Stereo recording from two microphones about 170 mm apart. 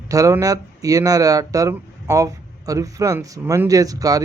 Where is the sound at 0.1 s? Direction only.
20° right (ahead or behind).